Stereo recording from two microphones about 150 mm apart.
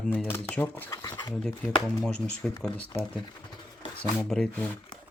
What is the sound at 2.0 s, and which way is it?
Speech, 5° left (ahead or behind).